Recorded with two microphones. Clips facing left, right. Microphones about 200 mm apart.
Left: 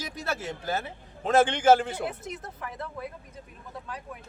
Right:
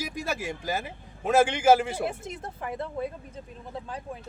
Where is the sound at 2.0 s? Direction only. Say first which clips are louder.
Right 2 dB; 25° right (ahead or behind).